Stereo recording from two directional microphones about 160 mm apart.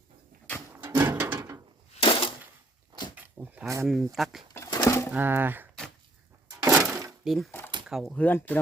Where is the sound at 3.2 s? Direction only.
10° right (ahead or behind).